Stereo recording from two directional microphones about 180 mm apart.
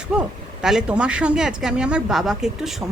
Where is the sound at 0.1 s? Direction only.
5° right (ahead or behind).